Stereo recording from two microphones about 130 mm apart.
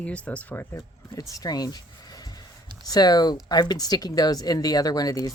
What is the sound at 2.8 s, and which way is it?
Speech, 30° left (ahead or behind).